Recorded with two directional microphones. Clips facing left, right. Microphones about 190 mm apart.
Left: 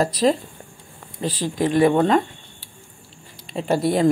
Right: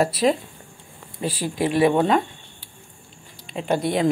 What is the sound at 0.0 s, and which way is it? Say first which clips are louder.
Speech: left 1 dB; 5° right (ahead or behind).